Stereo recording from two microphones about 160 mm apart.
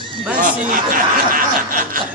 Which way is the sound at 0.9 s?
60° right (ahead or behind).